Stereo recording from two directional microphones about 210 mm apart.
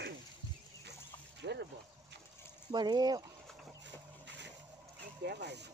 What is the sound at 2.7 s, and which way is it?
Speech, 20° right (ahead or behind).